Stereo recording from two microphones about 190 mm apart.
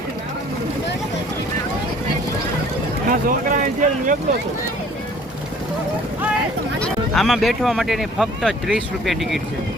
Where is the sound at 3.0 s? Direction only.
45° right (ahead or behind).